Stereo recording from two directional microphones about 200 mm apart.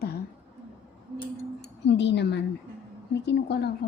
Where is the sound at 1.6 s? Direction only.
60° left (ahead or behind).